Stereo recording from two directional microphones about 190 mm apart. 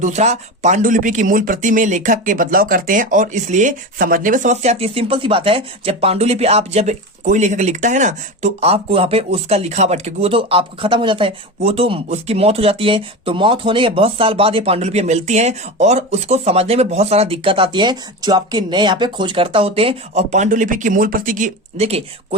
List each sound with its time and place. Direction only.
0.0 s speech: 35° right (ahead or behind)